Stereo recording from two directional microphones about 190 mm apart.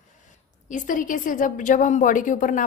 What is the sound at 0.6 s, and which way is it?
A woman's voice, 45° left (ahead or behind).